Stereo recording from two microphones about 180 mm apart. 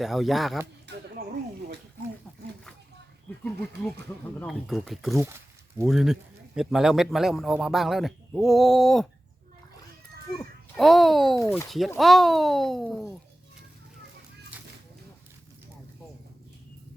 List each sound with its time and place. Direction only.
0.0 s a man's voice: centre (ahead or behind)
0.9 s a sound: 70° right (ahead or behind)
4.4 s a man's voice: centre (ahead or behind)
10.8 s a man's voice: centre (ahead or behind)
11.3 s speech: 15° left (ahead or behind)
11.9 s a man's voice: centre (ahead or behind)